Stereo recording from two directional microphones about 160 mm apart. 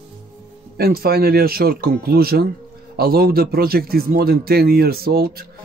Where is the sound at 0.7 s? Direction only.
75° right (ahead or behind).